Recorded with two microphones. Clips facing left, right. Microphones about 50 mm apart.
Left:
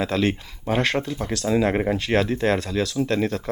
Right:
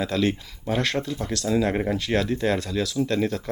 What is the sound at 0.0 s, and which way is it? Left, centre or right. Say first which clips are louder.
Speech: left 1 dB; centre.